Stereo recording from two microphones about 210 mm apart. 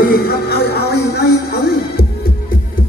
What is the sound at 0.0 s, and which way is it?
Music, 45° left (ahead or behind).